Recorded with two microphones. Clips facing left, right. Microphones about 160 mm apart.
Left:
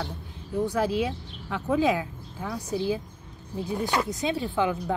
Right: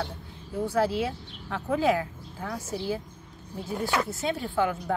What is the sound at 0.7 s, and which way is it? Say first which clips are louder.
Speech: right 2 dB; 15° left (ahead or behind).